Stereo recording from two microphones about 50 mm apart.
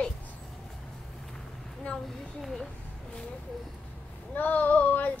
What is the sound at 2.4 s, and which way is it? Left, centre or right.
Speech, centre.